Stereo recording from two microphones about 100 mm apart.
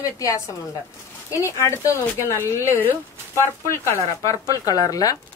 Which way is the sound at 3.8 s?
30° left (ahead or behind).